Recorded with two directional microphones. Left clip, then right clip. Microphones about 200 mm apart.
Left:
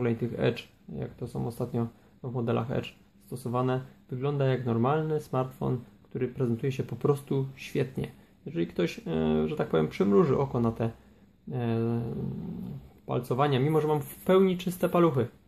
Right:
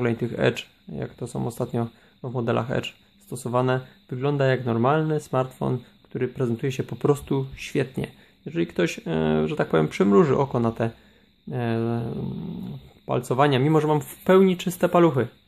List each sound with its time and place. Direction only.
0.0 s speech: 20° right (ahead or behind)